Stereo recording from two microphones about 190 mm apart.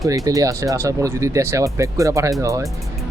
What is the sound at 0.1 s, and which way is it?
Speech, 15° right (ahead or behind).